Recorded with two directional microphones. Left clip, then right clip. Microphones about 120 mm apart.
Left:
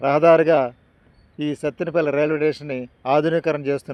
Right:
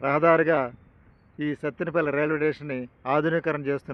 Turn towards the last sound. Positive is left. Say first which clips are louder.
# left 5 dB
turn(degrees=35)  # may be behind; listen again after turning